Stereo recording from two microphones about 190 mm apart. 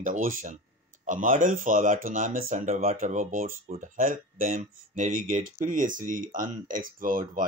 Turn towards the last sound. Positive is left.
turn(degrees=-45)  # may be behind; listen again after turning